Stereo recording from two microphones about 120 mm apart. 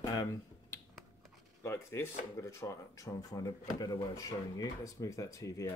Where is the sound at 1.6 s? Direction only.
20° left (ahead or behind).